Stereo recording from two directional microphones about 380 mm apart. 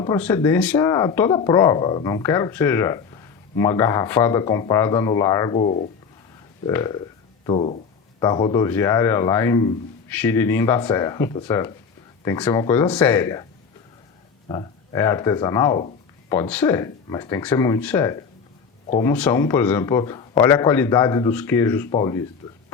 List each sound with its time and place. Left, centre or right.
0.0 s speech: centre
14.4 s speech: centre